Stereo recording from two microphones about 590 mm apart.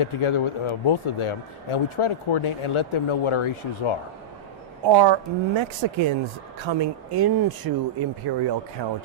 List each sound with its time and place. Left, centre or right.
0.0 s speech: left
4.9 s speech: right
6.7 s speech: right